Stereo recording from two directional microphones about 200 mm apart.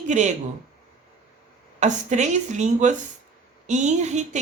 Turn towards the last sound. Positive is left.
turn(degrees=-35)  # may be behind; listen again after turning